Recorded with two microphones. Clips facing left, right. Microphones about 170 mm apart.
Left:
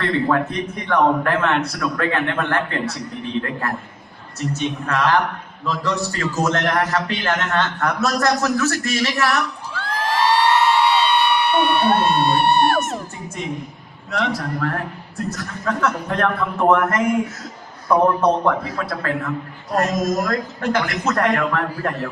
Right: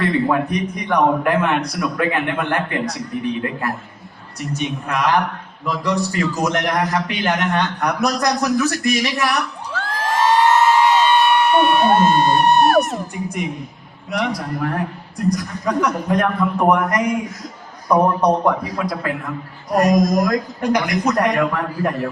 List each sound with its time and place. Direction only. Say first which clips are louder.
0.3 s a man's voice: right 1 dB; 15° right (ahead or behind)
4.4 s a man's voice: left 1 dB; 15° right (ahead or behind)
9.7 s a sound: right 1 dB; 45° right (ahead or behind)
13.2 s a man's voice: right 3 dB; 15° right (ahead or behind)